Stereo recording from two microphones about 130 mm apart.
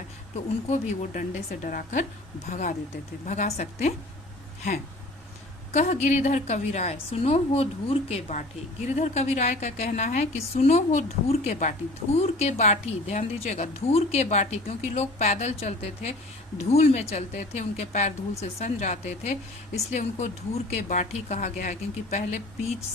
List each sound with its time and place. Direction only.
0.7 s speech: 70° left (ahead or behind)
2.5 s speech: 65° left (ahead or behind)
5.7 s speech: 60° left (ahead or behind)